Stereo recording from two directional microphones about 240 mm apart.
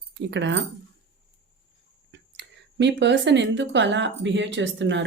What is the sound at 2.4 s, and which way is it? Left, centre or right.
Speech, right.